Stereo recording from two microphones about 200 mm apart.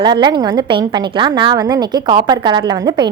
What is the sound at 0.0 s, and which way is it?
A woman's voice, 20° right (ahead or behind).